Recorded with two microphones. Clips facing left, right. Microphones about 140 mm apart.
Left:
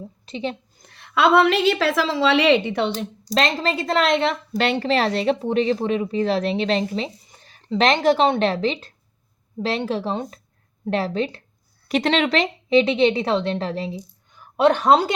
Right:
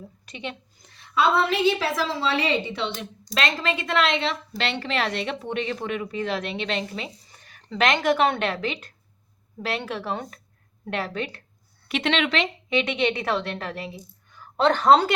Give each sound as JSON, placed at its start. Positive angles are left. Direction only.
{"t": 0.3, "sound": "a woman's voice", "side_deg": 30}
{"t": 0.8, "sound": "a woman's voice", "side_deg": 60}
{"t": 2.9, "sound": "a woman's voice", "side_deg": 35}
{"t": 11.9, "sound": "a woman's voice", "side_deg": 40}